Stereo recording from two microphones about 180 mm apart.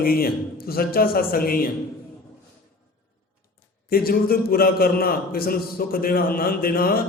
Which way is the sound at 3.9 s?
55° left (ahead or behind).